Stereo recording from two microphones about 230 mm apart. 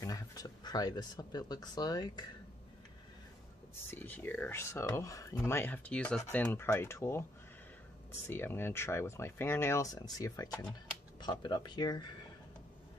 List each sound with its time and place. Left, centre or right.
0.0 s speech: centre
3.9 s speech: centre
8.3 s speech: centre